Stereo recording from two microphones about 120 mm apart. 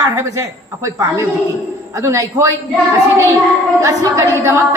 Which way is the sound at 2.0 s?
25° right (ahead or behind).